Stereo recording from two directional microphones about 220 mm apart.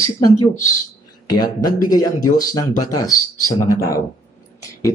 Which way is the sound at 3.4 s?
15° left (ahead or behind).